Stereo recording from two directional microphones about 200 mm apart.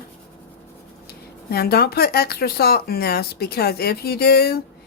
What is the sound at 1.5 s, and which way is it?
Speech, 50° left (ahead or behind).